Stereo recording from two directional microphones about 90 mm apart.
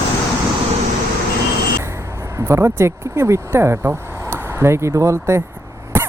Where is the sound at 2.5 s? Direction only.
25° right (ahead or behind).